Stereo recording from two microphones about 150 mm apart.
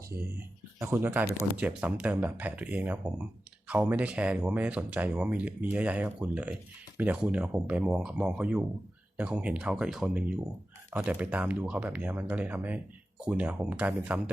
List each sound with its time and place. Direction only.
0.3 s speech: 15° right (ahead or behind)